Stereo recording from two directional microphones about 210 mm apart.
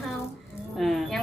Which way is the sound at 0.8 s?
Centre (ahead or behind).